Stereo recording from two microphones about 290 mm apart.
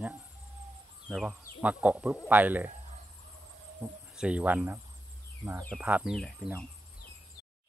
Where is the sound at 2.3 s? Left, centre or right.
Centre.